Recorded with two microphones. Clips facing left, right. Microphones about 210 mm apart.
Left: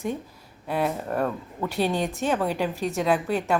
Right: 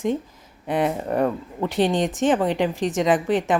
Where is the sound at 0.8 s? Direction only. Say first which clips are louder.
Right 3 dB; centre (ahead or behind).